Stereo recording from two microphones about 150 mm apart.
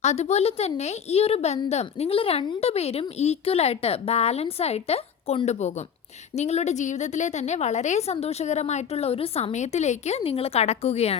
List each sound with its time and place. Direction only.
0.0 s a woman's voice: 45° left (ahead or behind)